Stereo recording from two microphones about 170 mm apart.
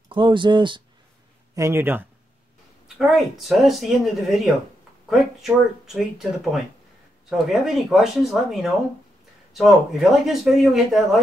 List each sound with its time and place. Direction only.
0.1 s speech: 30° right (ahead or behind)
1.5 s a man's voice: 15° right (ahead or behind)
3.0 s speech: centre (ahead or behind)